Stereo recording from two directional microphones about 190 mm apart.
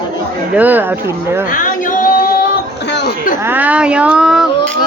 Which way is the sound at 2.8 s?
65° left (ahead or behind).